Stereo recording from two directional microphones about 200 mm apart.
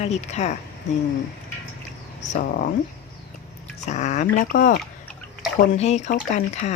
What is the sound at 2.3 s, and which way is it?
Speech, 40° left (ahead or behind).